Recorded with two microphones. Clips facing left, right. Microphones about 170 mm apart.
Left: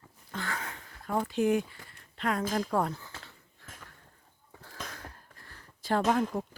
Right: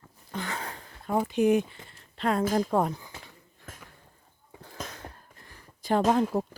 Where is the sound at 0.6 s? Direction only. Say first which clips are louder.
Right 3 dB; 35° right (ahead or behind).